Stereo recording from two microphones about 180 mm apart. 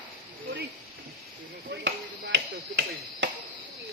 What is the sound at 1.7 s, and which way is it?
Chop, 70° right (ahead or behind).